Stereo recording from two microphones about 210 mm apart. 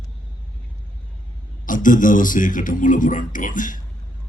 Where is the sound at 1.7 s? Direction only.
40° left (ahead or behind).